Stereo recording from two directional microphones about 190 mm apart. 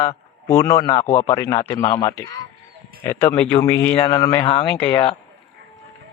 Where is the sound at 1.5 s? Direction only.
30° left (ahead or behind).